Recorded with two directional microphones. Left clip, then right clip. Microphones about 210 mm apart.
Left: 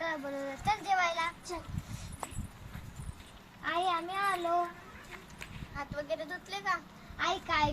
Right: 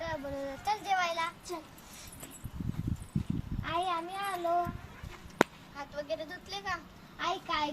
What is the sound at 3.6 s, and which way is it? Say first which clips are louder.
Speech: left 1 dB; 15° right (ahead or behind).